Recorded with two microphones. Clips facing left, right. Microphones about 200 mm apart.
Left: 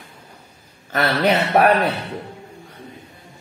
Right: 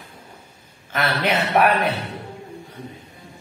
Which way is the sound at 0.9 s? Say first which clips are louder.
Left 4 dB; 40° left (ahead or behind).